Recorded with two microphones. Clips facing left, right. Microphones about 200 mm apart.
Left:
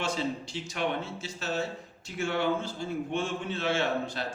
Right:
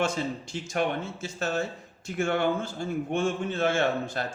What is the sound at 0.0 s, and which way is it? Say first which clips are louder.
A man's voice: right 3 dB; 50° right (ahead or behind).